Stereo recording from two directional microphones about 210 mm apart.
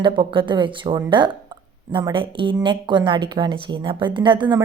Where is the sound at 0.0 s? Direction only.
25° right (ahead or behind).